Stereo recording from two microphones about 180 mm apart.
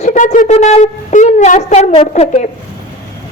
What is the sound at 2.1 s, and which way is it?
Speech, 35° left (ahead or behind).